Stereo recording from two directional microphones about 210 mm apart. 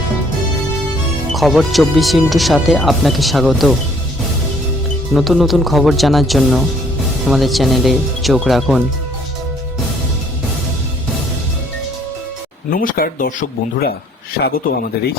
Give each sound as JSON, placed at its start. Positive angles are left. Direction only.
{"t": 1.3, "sound": "speech", "side_deg": 0}
{"t": 5.1, "sound": "speech", "side_deg": 0}
{"t": 12.7, "sound": "speech", "side_deg": 40}
{"t": 14.4, "sound": "a man's voice", "side_deg": 50}